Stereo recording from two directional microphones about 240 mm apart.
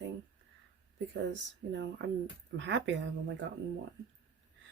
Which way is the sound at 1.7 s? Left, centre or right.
Right.